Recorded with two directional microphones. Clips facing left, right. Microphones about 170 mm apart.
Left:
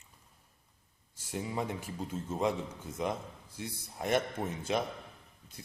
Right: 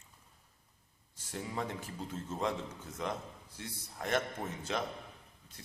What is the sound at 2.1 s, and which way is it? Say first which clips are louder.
Speech: left 4 dB; 10° left (ahead or behind).